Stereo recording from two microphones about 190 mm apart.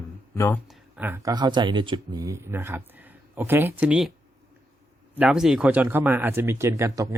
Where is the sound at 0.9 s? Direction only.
10° right (ahead or behind).